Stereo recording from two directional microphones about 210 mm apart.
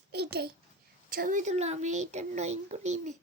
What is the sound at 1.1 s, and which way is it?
Speech, 40° right (ahead or behind).